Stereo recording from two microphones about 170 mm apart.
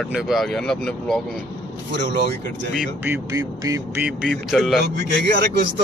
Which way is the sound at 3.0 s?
15° right (ahead or behind).